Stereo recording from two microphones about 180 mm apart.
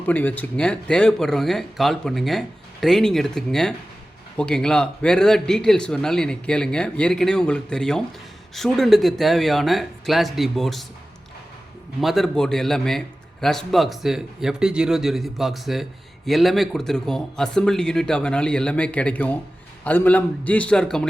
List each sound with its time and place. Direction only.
0.0 s speech: 10° left (ahead or behind)
11.9 s a man's voice: centre (ahead or behind)